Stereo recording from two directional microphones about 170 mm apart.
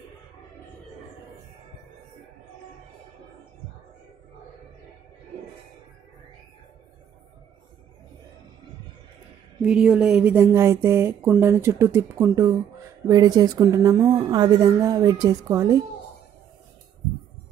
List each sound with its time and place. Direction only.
9.7 s a woman's voice: 5° right (ahead or behind); by 15.8 s 20° right (ahead or behind)